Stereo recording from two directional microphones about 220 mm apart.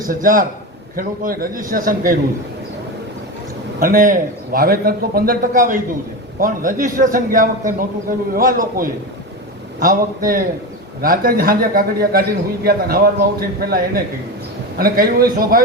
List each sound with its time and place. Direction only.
0.0 s a man's voice: 40° right (ahead or behind)
3.8 s a man's voice: 40° right (ahead or behind)